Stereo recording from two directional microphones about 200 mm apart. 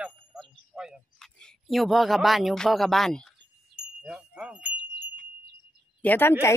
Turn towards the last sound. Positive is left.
turn(degrees=10)  # may be behind; listen again after turning